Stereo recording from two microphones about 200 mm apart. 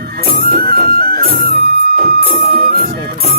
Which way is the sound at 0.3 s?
50° right (ahead or behind).